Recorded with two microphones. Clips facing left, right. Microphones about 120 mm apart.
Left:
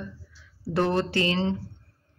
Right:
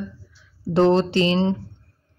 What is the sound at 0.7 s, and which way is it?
Speech, 25° right (ahead or behind).